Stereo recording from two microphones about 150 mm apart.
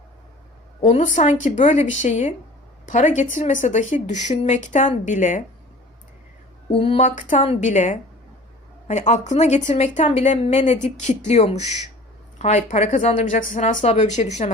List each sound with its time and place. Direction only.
0.9 s speech: 50° left (ahead or behind)
6.7 s speech: 40° left (ahead or behind)
7.0 s speech: 60° left (ahead or behind)